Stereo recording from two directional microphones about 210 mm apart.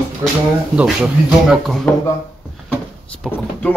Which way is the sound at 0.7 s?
5° right (ahead or behind).